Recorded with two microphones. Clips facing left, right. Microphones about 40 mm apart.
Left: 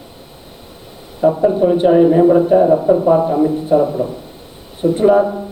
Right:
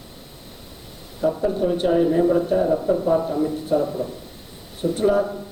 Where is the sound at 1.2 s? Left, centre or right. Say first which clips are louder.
Left 8 dB; left.